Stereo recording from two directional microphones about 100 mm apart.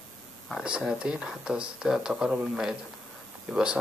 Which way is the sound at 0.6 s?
5° right (ahead or behind).